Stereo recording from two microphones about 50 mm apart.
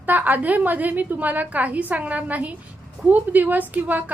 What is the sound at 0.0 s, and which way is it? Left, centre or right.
A woman's voice, right.